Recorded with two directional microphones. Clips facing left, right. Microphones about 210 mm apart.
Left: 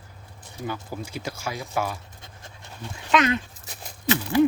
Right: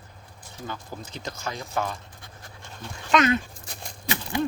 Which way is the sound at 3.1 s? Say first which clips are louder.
Even; 5° left (ahead or behind).